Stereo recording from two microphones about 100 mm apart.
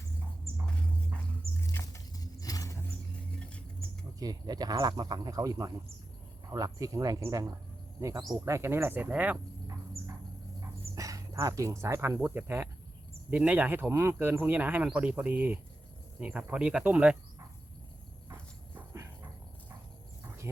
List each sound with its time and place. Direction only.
1.7 s a sound: 20° left (ahead or behind)
2.1 s vehicle: 40° left (ahead or behind)
3.3 s rodents: 10° left (ahead or behind)
4.2 s speech: 40° right (ahead or behind); by 9.4 s 15° right (ahead or behind)
10.6 s a sound: 35° right (ahead or behind)
12.2 s speech: 20° right (ahead or behind)
18.7 s dog: 25° right (ahead or behind)